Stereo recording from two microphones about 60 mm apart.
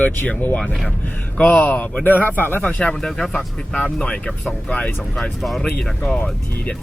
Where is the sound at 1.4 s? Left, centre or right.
Left.